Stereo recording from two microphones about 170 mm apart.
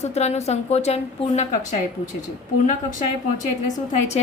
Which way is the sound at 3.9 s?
40° left (ahead or behind).